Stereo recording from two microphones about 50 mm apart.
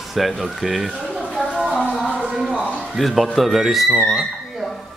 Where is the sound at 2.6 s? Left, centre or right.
Left.